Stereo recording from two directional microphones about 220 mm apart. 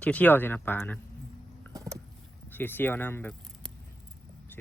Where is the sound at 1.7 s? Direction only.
15° right (ahead or behind).